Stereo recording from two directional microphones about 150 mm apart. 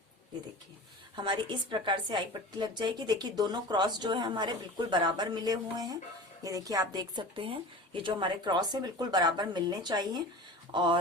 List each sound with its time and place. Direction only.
1.1 s a woman's voice: 30° right (ahead or behind)